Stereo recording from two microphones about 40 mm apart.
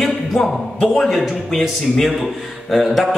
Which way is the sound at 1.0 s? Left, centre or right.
Centre.